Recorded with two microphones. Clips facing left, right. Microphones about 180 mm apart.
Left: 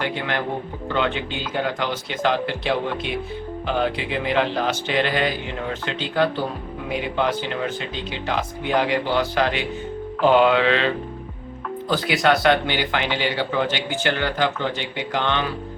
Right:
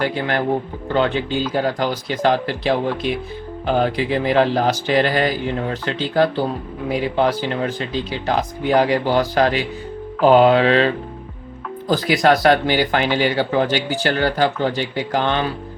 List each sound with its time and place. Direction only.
0.0 s speech: 40° right (ahead or behind)